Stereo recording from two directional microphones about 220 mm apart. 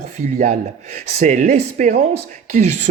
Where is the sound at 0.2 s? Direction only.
30° right (ahead or behind).